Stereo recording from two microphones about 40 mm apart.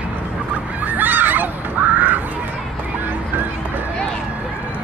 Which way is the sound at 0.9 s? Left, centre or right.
Right.